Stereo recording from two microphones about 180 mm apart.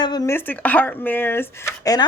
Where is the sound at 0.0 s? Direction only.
25° left (ahead or behind).